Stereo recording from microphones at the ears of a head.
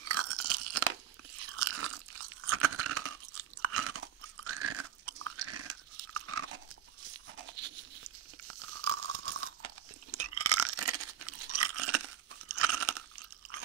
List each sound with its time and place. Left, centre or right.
0.0 s crunch: right
7.1 s a sound: right
8.5 s crunch: right
10.1 s toothbrush: right